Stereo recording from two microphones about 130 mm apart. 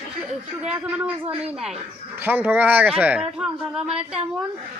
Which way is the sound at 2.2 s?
15° right (ahead or behind).